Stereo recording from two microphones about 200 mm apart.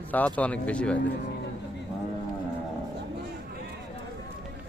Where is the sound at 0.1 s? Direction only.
5° left (ahead or behind).